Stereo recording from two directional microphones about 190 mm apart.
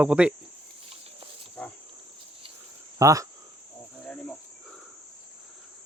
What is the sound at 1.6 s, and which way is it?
Cricket, 5° left (ahead or behind).